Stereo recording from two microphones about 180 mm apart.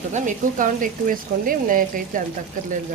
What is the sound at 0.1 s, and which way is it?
Speech, 45° right (ahead or behind).